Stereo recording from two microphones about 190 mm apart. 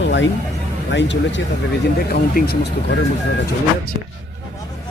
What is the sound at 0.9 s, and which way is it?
Speech, 70° left (ahead or behind).